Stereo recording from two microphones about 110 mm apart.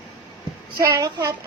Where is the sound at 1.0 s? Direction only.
35° right (ahead or behind).